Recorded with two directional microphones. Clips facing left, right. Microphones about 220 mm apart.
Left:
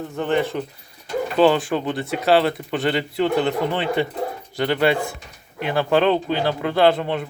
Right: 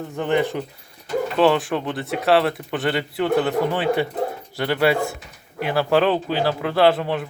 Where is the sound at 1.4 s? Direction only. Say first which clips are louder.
Left 2 dB; centre (ahead or behind).